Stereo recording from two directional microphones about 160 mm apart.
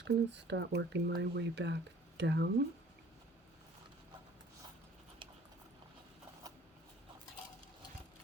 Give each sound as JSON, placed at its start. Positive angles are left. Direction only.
{"t": 0.0, "sound": "speech", "side_deg": -90}